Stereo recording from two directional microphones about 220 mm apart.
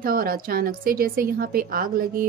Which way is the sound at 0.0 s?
40° right (ahead or behind).